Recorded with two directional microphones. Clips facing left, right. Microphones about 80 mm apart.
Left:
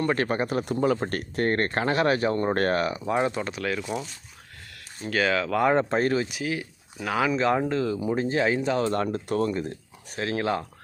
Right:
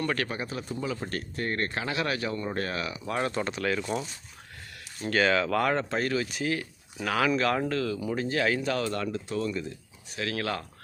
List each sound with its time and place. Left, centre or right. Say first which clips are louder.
0.0 s speech: left 5 dB; left
0.3 s speech: left 8 dB; left
0.6 s speech: left 9 dB; left
3.0 s speech: left 4 dB; centre
3.4 s speech: even; centre
5.7 s speech: left 5 dB; left
6.2 s speech: even; centre
8.9 s speech: left 5 dB; left
10.2 s speech: left 5 dB; left